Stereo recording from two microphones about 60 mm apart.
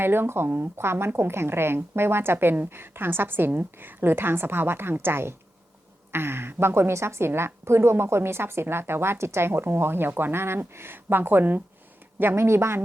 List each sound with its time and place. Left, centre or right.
0.0 s a woman's voice: right
12.4 s a woman's voice: right